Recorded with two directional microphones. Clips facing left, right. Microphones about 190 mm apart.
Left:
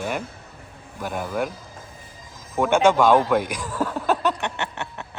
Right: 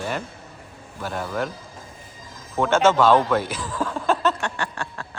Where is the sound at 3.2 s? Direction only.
10° left (ahead or behind).